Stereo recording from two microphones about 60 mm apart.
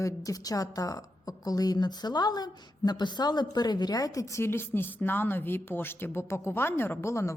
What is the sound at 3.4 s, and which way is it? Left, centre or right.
Speech, left.